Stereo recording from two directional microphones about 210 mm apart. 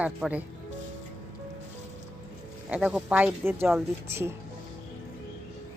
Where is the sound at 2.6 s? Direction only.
5° right (ahead or behind).